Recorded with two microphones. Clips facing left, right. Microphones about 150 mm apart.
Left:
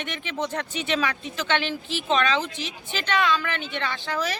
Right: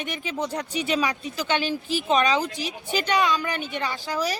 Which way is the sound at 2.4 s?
40° right (ahead or behind).